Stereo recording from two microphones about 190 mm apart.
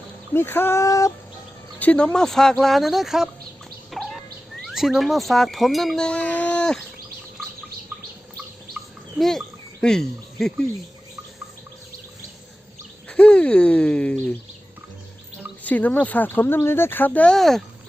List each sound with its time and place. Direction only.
0.3 s speech: 10° left (ahead or behind)
3.9 s bird: centre (ahead or behind)
4.7 s wind chime: centre (ahead or behind)
8.8 s bird: centre (ahead or behind)
9.1 s speech: centre (ahead or behind)
13.1 s speech: 5° left (ahead or behind)
15.6 s speech: 10° left (ahead or behind)